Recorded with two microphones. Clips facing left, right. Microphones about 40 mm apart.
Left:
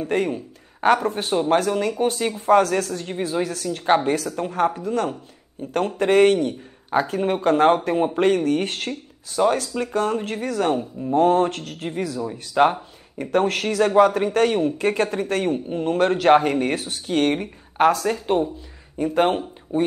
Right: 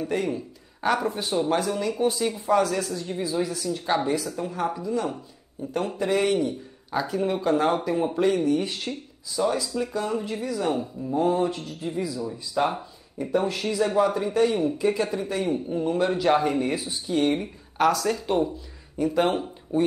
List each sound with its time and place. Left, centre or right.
0.0 s speech: left
6.9 s speech: left
17.7 s speech: left